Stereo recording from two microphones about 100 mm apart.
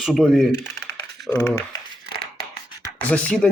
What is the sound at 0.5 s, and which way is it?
Speech, 25° left (ahead or behind).